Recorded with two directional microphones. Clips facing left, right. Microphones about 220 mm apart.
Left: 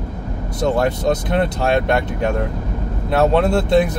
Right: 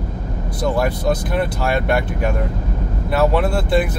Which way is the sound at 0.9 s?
25° left (ahead or behind).